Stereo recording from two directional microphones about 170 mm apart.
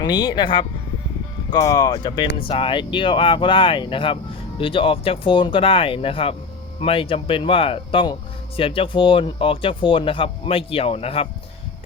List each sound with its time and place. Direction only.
0.0 s speech: 25° left (ahead or behind)